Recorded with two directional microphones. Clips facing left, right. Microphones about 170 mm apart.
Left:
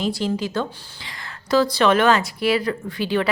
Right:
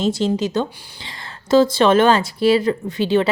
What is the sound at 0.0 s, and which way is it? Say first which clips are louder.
A woman's voice: right 4 dB; 20° right (ahead or behind).